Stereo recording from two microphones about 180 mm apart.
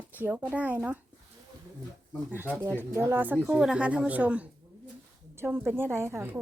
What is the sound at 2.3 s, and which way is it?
A woman's voice, 10° right (ahead or behind).